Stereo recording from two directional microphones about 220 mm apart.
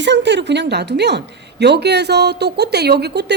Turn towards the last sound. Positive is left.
turn(degrees=-50)  # may be behind; listen again after turning